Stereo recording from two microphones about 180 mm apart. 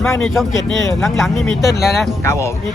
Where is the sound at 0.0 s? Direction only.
15° left (ahead or behind).